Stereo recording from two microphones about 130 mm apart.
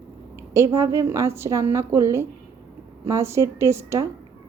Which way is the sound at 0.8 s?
20° right (ahead or behind).